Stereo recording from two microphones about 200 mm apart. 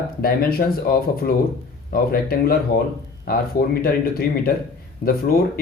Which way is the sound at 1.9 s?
50° left (ahead or behind).